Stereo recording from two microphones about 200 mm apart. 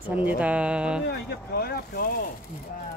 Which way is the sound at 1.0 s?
50° left (ahead or behind).